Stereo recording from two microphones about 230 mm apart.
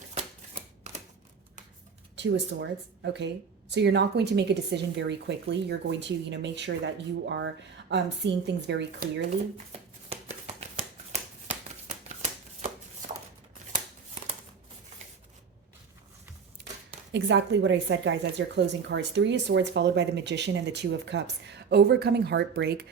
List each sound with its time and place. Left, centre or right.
0.1 s shuffling cards: right
2.1 s speech: right
10.1 s shuffling cards: right
17.1 s speech: right